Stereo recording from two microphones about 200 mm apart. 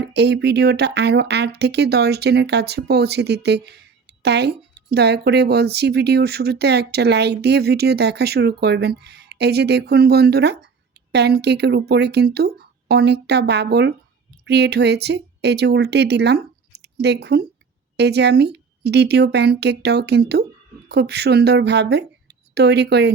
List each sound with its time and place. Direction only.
0.0 s a woman's voice: 55° right (ahead or behind)